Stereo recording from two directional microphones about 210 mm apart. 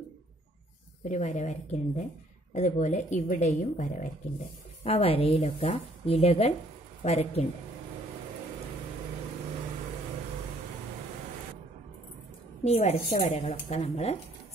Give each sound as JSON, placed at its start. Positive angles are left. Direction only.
{"t": 1.0, "sound": "speech", "side_deg": 35}
{"t": 12.6, "sound": "speech", "side_deg": 30}